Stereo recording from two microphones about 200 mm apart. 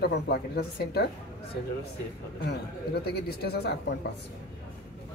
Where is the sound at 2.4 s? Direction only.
50° left (ahead or behind).